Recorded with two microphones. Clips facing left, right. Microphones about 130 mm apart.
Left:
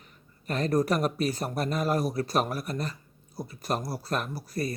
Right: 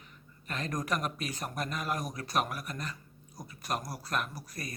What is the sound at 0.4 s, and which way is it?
Speech, 35° left (ahead or behind).